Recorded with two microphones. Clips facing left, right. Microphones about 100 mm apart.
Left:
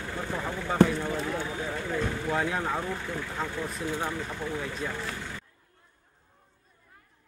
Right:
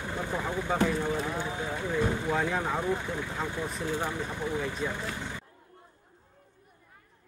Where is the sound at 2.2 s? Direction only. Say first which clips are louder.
Even; centre (ahead or behind); by 5.4 s 20° right (ahead or behind).